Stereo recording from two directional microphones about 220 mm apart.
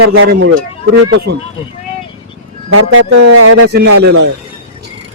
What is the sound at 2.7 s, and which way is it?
Speech, 80° right.